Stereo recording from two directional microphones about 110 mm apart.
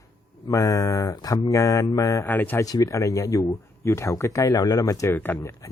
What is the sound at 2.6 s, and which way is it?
Speech, 35° left (ahead or behind).